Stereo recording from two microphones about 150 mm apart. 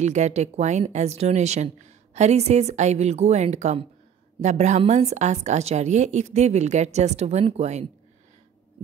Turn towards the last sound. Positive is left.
turn(degrees=-50)  # may be behind; listen again after turning